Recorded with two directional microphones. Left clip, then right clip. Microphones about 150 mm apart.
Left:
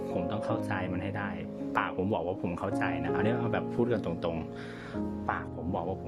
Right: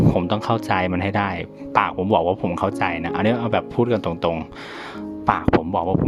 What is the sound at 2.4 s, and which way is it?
Speech, 40° right (ahead or behind).